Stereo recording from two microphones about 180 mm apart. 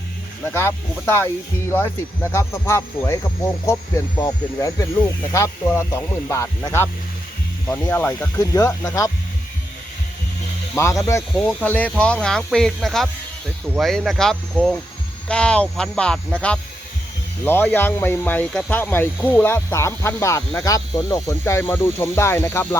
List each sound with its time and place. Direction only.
0.4 s speech: 10° left (ahead or behind)
10.8 s speech: 15° left (ahead or behind)